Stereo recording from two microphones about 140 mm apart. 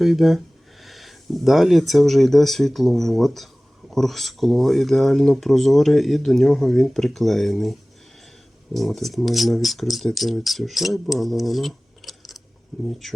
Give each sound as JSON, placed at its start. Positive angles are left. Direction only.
{"t": 0.0, "sound": "speech", "side_deg": 0}